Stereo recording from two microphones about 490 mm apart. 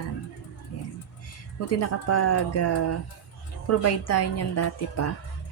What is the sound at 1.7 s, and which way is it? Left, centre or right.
A woman's voice, left.